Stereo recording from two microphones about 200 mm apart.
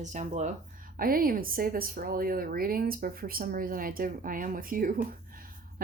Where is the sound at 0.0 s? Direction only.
35° right (ahead or behind).